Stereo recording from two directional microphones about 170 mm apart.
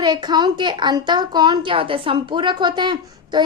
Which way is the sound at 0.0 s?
25° right (ahead or behind).